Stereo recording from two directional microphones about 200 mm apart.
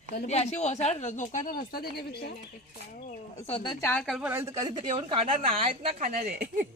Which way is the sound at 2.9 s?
40° left (ahead or behind).